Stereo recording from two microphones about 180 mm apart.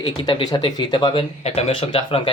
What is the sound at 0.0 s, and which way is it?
Speech, 25° left (ahead or behind).